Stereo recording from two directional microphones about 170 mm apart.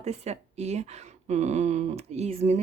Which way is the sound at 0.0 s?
40° right (ahead or behind).